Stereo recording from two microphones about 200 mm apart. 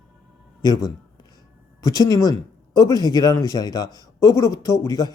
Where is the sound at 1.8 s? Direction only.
15° left (ahead or behind).